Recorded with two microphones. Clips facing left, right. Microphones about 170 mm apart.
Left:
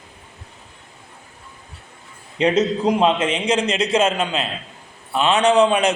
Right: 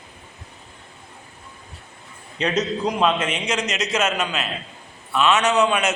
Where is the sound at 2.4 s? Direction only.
25° left (ahead or behind).